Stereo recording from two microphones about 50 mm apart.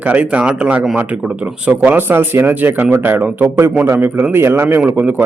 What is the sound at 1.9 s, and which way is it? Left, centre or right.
Speech, right.